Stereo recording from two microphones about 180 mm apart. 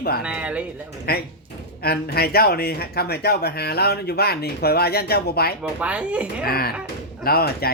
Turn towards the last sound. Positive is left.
turn(degrees=60)  # may be behind; listen again after turning